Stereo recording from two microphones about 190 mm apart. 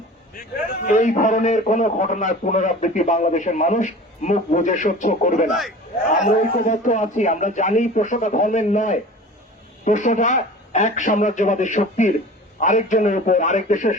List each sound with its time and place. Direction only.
0.3 s a man's voice: 45° left (ahead or behind)